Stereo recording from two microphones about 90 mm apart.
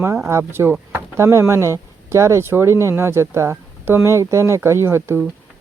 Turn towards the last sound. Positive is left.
turn(degrees=-30)  # may be behind; listen again after turning